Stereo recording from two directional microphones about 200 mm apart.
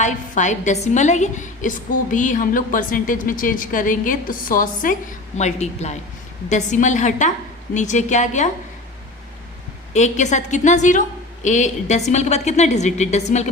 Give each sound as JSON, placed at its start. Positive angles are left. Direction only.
{"t": 0.0, "sound": "a woman's voice", "side_deg": 35}
{"t": 9.9, "sound": "a woman's voice", "side_deg": 35}